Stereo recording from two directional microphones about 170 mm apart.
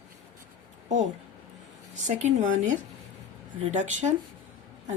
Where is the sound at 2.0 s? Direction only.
45° right (ahead or behind).